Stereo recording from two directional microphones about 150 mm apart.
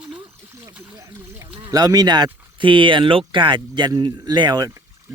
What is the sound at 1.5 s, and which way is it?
Speech, 35° right (ahead or behind).